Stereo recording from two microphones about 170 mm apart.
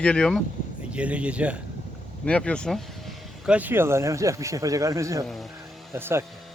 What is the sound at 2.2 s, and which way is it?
Speech, 5° left (ahead or behind).